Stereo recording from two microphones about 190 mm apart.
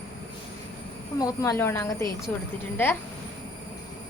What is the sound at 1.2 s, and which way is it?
Speech, 20° left (ahead or behind).